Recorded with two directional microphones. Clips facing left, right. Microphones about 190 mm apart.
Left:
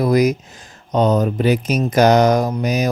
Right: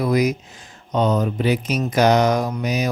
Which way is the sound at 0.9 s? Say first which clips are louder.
Left 3 dB; 40° left (ahead or behind).